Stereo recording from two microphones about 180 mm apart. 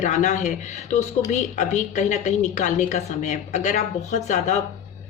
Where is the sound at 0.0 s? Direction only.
40° left (ahead or behind).